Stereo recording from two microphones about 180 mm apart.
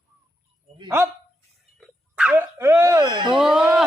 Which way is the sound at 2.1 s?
10° right (ahead or behind).